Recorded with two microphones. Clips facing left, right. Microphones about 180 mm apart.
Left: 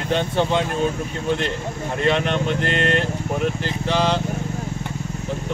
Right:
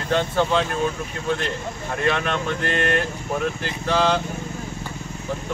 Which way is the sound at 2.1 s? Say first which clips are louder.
Left 3 dB; 20° left (ahead or behind).